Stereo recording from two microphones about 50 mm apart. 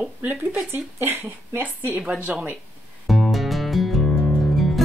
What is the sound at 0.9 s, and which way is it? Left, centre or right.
Speech, right.